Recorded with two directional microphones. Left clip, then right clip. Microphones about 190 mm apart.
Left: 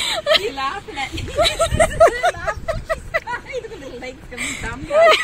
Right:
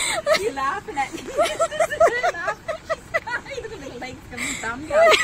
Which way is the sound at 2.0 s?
25° left (ahead or behind).